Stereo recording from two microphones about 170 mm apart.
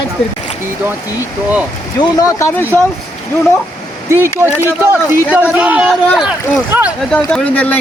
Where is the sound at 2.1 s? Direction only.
20° left (ahead or behind).